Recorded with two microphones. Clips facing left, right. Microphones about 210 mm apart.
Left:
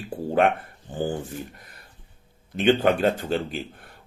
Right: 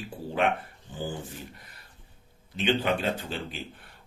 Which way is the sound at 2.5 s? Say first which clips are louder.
Left 7 dB; 50° left (ahead or behind).